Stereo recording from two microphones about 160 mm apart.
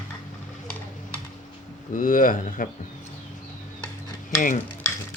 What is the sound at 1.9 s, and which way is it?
Speech, 55° left (ahead or behind).